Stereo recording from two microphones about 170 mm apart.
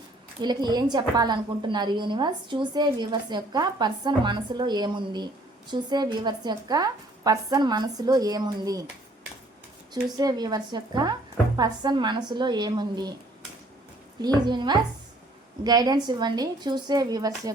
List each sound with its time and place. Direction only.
0.4 s a woman's voice: 25° right (ahead or behind)
9.9 s a woman's voice: 25° right (ahead or behind)
14.2 s a woman's voice: 25° right (ahead or behind)